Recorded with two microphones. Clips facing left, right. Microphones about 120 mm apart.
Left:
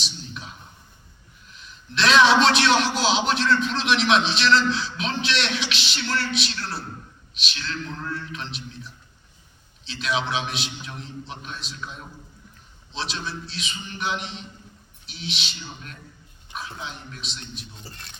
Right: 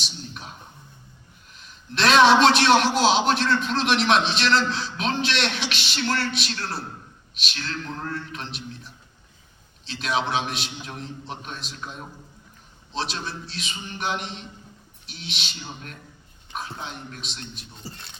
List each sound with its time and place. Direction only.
1.5 s a man's voice: 45° right (ahead or behind)
6.0 s a sound: 40° right (ahead or behind)
6.4 s a man's voice: 45° right (ahead or behind)
9.8 s a man's voice: 45° right (ahead or behind)
15.0 s a sound: 45° right (ahead or behind)
15.6 s a man's voice: 45° right (ahead or behind)